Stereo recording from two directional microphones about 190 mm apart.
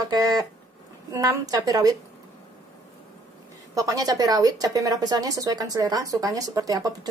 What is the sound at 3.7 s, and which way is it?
A woman's voice, 20° right (ahead or behind).